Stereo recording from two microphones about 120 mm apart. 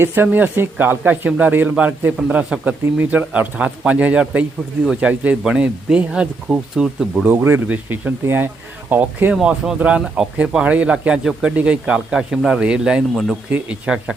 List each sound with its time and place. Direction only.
0.0 s speech: 20° right (ahead or behind); by 7.3 s centre (ahead or behind)
7.3 s speech: 15° right (ahead or behind)
9.3 s speech: 5° right (ahead or behind)